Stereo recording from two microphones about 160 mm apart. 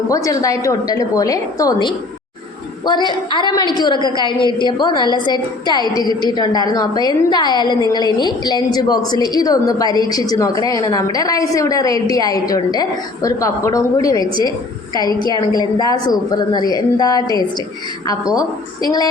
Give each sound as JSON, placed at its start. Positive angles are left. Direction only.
{"t": 0.1, "sound": "a woman's voice", "side_deg": 20}
{"t": 18.3, "sound": "a woman's voice", "side_deg": 25}